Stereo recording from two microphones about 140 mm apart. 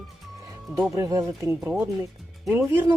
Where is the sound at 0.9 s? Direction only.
25° right (ahead or behind).